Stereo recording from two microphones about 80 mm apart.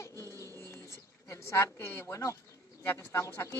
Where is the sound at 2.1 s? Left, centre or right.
Left.